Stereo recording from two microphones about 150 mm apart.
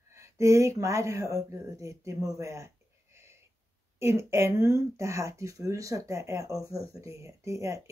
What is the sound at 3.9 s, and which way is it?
Speech, 20° right (ahead or behind).